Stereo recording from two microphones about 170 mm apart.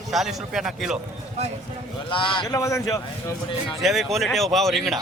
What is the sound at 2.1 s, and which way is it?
Speech, 30° left (ahead or behind).